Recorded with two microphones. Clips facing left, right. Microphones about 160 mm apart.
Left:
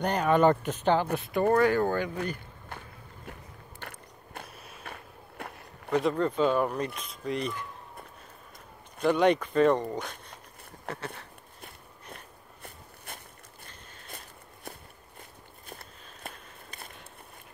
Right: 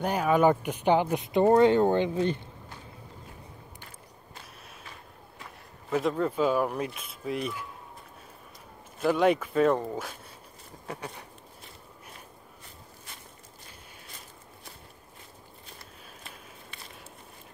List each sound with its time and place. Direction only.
0.0 s speech: 5° right (ahead or behind); by 2.4 s 25° right (ahead or behind)
2.7 s walk: 55° left (ahead or behind)
3.8 s mechanisms: 60° left (ahead or behind)
4.9 s a sound: 60° left (ahead or behind)
5.9 s speech: 5° right (ahead or behind)
9.0 s speech: 5° right (ahead or behind)
12.6 s a sound: 55° left (ahead or behind)
14.0 s walk: 55° left (ahead or behind)
15.7 s a sound: 55° left (ahead or behind)